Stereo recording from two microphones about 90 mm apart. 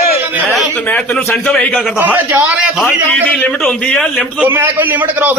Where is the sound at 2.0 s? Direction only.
20° right (ahead or behind).